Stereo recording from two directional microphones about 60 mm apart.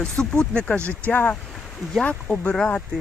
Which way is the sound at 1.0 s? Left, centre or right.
Left.